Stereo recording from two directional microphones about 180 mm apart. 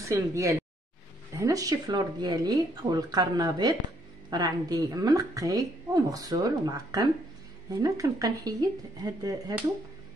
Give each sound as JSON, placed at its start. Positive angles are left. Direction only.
{"t": 0.0, "sound": "a woman's voice", "side_deg": -15}